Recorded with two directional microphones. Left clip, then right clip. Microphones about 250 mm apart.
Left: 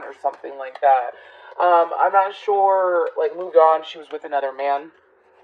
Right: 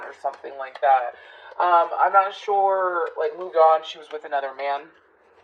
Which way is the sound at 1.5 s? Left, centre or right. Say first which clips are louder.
Left 2 dB; left.